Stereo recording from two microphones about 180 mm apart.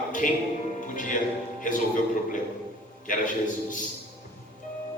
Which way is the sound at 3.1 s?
45° left (ahead or behind).